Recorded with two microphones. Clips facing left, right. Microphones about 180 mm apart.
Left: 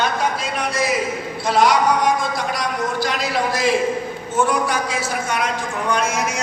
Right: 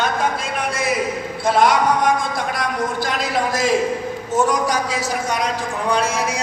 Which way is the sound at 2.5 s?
50° right (ahead or behind).